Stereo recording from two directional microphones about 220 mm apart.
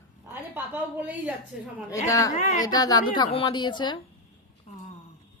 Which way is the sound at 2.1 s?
15° left (ahead or behind).